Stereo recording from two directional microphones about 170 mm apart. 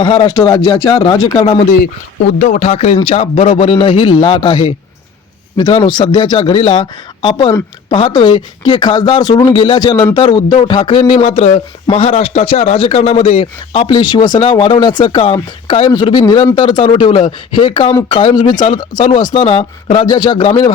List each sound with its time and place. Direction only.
0.0 s speech: 25° left (ahead or behind)
2.4 s speech: 40° left (ahead or behind)
5.7 s speech: 30° left (ahead or behind)